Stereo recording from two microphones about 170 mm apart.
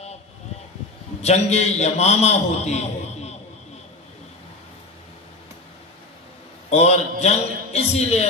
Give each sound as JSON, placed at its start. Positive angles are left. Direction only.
{"t": 1.2, "sound": "a man's voice", "side_deg": 40}
{"t": 6.7, "sound": "a man's voice", "side_deg": 40}